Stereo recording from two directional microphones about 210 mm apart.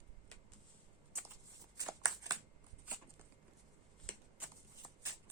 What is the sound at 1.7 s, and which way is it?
Shuffling cards, 15° right (ahead or behind).